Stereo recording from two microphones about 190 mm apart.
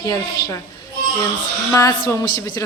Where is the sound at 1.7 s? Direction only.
15° left (ahead or behind).